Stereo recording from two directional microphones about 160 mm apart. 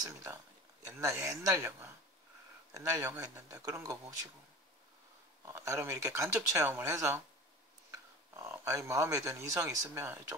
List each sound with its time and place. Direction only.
0.0 s speech: 20° right (ahead or behind)
5.4 s speech: 20° right (ahead or behind)
8.5 s speech: 20° right (ahead or behind)